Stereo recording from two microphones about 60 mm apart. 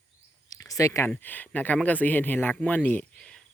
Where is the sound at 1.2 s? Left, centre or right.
Left.